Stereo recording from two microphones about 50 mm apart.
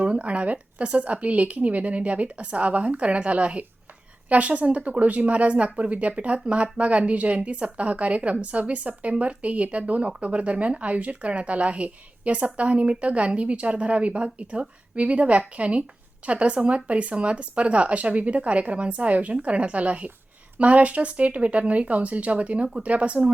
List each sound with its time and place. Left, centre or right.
0.0 s speech: right